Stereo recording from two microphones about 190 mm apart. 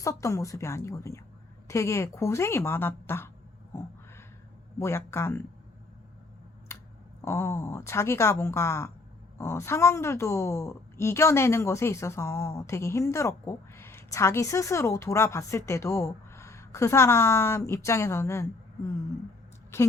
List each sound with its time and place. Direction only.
0.0 s a woman's voice: 15° left (ahead or behind)
4.8 s a woman's voice: 15° left (ahead or behind)
6.7 s a sound: 15° left (ahead or behind)
7.3 s a woman's voice: 15° left (ahead or behind)